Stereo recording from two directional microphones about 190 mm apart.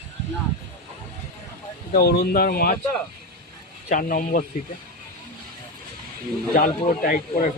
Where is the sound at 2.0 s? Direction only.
55° left (ahead or behind).